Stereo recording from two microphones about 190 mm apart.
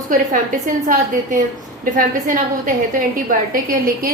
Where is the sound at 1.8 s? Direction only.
45° right (ahead or behind).